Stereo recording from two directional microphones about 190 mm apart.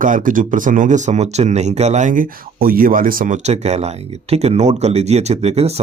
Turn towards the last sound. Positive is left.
turn(degrees=-35)  # may be behind; listen again after turning